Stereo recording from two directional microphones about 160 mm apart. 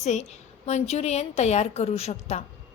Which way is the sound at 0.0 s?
45° left (ahead or behind).